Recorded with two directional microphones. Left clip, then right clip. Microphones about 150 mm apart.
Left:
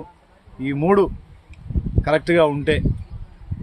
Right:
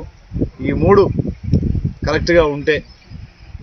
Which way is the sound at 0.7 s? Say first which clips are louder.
Right 5 dB; 40° left (ahead or behind).